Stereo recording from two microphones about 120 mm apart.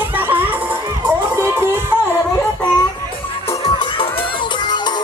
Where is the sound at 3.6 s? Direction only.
45° left (ahead or behind).